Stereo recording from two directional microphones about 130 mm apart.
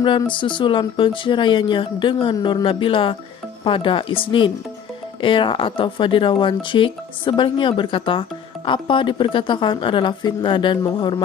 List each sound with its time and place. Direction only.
0.0 s speech: 40° left (ahead or behind)